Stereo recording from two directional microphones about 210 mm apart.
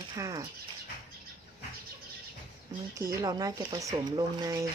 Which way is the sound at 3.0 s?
15° right (ahead or behind).